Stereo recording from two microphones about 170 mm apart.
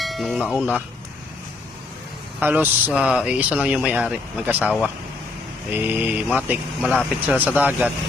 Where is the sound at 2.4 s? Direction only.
10° right (ahead or behind).